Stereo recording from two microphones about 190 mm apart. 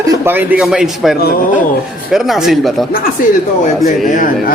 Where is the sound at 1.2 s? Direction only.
55° left (ahead or behind).